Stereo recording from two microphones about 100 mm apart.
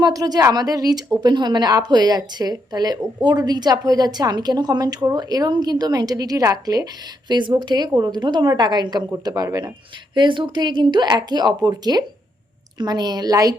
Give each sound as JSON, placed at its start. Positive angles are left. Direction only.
{"t": 0.0, "sound": "a woman's voice", "side_deg": -40}
{"t": 7.3, "sound": "a woman's voice", "side_deg": -50}
{"t": 10.2, "sound": "a woman's voice", "side_deg": -55}